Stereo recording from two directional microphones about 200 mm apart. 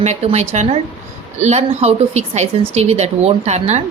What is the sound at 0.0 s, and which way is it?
A woman's voice, 30° right (ahead or behind).